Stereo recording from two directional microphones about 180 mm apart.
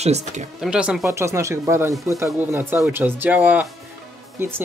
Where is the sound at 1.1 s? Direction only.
15° right (ahead or behind).